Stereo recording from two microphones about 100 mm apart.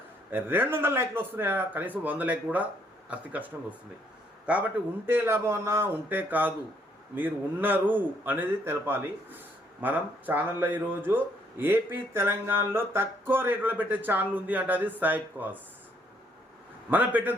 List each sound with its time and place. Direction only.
0.3 s speech: 20° right (ahead or behind)
5.0 s speech: 25° right (ahead or behind)
16.9 s speech: 15° right (ahead or behind)